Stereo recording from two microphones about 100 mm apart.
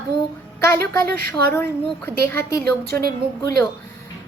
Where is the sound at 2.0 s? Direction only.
25° left (ahead or behind).